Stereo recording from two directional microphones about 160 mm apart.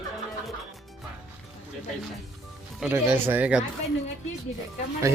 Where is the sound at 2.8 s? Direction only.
10° right (ahead or behind).